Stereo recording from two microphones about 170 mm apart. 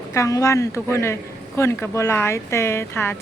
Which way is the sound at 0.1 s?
20° left (ahead or behind).